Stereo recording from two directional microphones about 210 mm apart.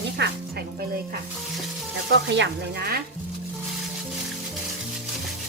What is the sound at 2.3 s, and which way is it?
Sizzle, 55° right (ahead or behind).